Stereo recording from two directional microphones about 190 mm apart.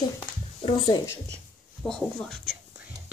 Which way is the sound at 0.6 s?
25° left (ahead or behind).